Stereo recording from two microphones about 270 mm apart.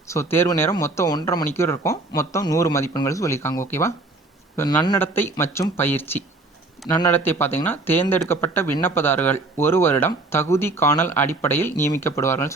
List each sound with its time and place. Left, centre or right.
0.1 s speech: centre